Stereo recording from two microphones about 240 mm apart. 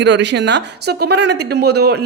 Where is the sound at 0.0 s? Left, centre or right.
Right.